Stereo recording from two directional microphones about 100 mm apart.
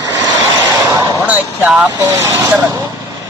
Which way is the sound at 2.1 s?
25° right (ahead or behind).